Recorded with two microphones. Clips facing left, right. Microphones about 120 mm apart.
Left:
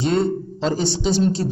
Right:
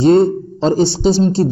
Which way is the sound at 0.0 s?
30° right (ahead or behind).